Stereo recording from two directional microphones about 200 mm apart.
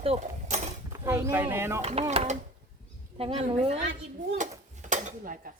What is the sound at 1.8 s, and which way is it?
A woman's voice, 30° right (ahead or behind).